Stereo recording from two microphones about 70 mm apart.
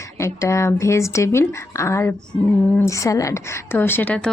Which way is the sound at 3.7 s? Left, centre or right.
Left.